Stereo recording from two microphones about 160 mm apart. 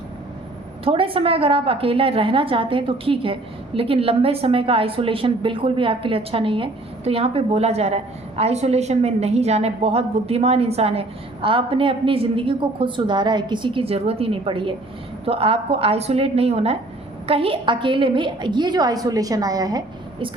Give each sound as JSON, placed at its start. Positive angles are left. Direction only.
{"t": 0.9, "sound": "a woman's voice", "side_deg": -35}